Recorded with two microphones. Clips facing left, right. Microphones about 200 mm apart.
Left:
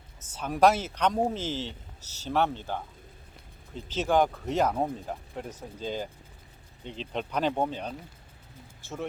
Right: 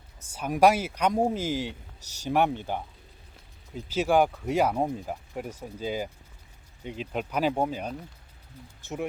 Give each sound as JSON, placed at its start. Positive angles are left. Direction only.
{"t": 0.2, "sound": "speech", "side_deg": -10}
{"t": 3.8, "sound": "speech", "side_deg": -10}